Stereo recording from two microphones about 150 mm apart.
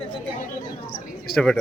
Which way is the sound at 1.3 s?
5° left (ahead or behind).